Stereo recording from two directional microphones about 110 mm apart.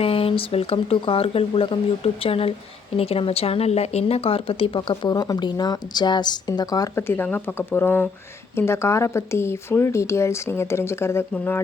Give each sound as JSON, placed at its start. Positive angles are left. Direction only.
{"t": 0.0, "sound": "speech", "side_deg": 60}
{"t": 5.1, "sound": "a woman's voice", "side_deg": 35}
{"t": 6.9, "sound": "speech", "side_deg": 20}